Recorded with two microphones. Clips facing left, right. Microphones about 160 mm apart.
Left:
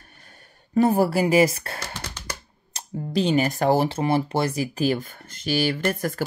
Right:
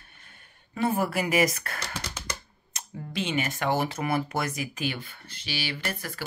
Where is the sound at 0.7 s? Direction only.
35° left (ahead or behind).